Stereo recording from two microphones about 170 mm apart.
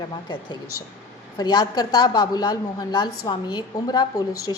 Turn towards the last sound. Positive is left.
turn(degrees=20)  # may be behind; listen again after turning